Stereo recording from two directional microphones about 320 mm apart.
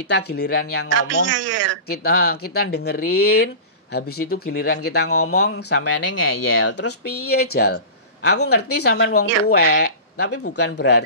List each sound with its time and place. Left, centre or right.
0.1 s speech: left
1.0 s speech: right
1.9 s speech: left
3.1 s speech: left
3.9 s speech: left
5.0 s speech: left